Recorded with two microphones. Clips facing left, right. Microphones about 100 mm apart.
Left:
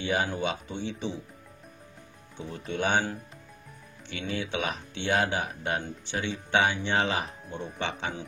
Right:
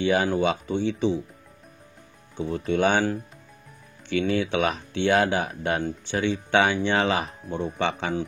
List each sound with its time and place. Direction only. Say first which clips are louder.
0.0 s speech: right 7 dB; 90° right
2.6 s speech: right 5 dB; 90° right
4.1 s speech: right 9 dB; 80° right